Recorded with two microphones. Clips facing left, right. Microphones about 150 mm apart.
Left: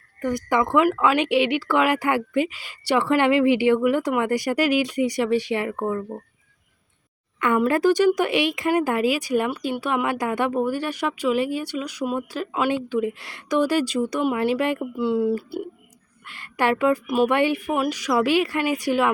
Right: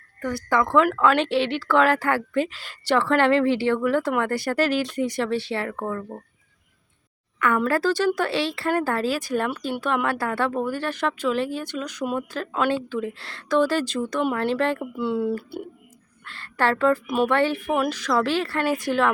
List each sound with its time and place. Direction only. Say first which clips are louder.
0.2 s speech: left 1 dB; 15° left (ahead or behind)
7.3 s speech: left 2 dB; 25° left (ahead or behind)
14.9 s a woman's voice: left 3 dB; centre (ahead or behind)